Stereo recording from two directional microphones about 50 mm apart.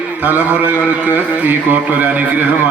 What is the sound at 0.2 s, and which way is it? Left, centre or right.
Speech, right.